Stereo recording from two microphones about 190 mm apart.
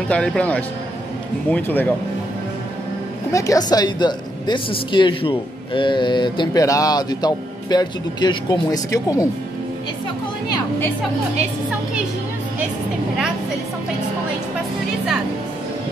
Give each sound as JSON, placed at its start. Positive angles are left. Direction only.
{"t": 0.1, "sound": "speech", "side_deg": 5}
{"t": 3.3, "sound": "speech", "side_deg": 15}